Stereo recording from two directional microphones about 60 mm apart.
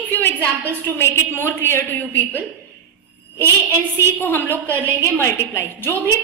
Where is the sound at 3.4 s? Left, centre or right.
Left.